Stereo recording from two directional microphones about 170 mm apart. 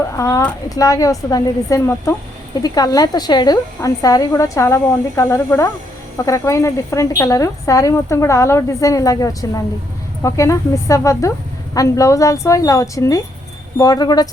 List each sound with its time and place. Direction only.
0.2 s speech: 20° left (ahead or behind)